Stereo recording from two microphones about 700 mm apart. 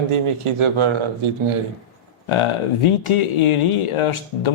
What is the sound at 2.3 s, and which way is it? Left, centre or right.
A man's voice, left.